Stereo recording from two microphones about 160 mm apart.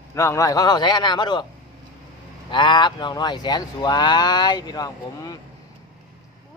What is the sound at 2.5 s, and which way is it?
Speech, 30° left (ahead or behind).